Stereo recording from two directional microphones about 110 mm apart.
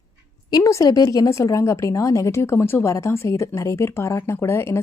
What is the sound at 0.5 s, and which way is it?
A woman's voice, 30° left (ahead or behind).